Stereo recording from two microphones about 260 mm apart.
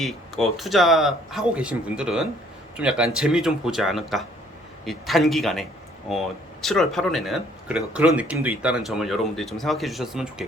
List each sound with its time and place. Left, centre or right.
0.0 s speech: centre